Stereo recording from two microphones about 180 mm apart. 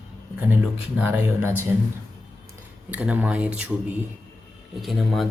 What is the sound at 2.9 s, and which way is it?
Speech, 10° right (ahead or behind).